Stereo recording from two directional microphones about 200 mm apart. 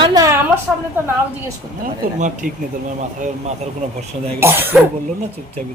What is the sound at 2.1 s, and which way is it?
Speech, 40° right (ahead or behind).